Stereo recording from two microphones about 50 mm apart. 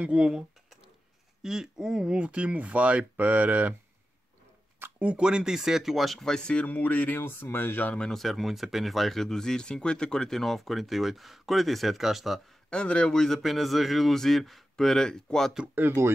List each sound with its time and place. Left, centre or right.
0.0 s speech: right
4.9 s a sound: right
5.2 s speech: centre
6.3 s speech: centre
6.7 s speech: left
7.2 s speech: left
8.1 s speech: centre
12.6 s speech: left
13.4 s speech: centre